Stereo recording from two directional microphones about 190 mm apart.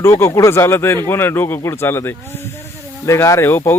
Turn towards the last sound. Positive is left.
turn(degrees=10)  # may be behind; listen again after turning